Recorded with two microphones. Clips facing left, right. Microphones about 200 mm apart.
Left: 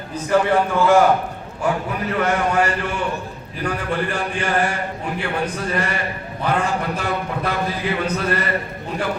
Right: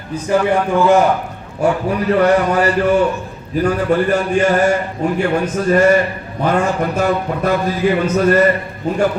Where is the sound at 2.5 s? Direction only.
35° right (ahead or behind).